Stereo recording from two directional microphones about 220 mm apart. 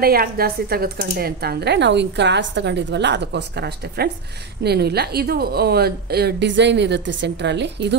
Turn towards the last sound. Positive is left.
turn(degrees=-50)  # may be behind; listen again after turning